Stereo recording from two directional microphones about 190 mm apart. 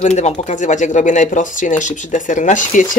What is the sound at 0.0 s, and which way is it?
Speech, 35° left (ahead or behind).